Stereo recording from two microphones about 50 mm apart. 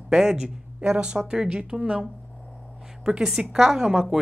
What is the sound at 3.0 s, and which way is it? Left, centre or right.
Speech, centre.